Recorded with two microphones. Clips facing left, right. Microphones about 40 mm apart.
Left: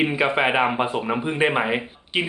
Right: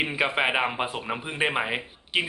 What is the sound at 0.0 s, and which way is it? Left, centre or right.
Speech, centre.